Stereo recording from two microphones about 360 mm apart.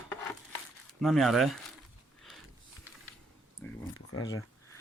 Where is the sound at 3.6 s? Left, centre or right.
Centre.